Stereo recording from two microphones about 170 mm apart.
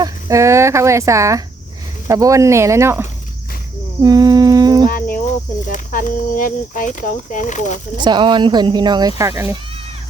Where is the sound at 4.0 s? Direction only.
20° right (ahead or behind).